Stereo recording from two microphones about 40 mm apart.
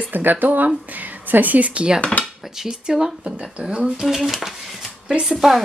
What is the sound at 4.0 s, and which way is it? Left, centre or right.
A woman's voice, centre.